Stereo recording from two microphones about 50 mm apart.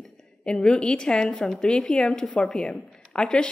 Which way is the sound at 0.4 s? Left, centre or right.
Centre.